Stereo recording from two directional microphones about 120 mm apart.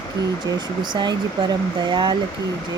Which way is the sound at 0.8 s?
40° right (ahead or behind).